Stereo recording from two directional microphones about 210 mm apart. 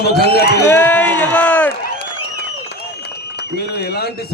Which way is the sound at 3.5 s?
50° left (ahead or behind).